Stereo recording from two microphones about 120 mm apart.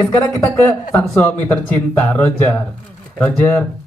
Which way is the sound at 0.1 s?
15° left (ahead or behind).